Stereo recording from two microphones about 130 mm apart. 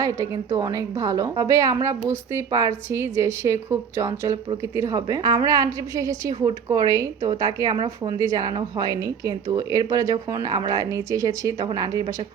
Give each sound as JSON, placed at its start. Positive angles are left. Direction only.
{"t": 0.0, "sound": "a woman's voice", "side_deg": -25}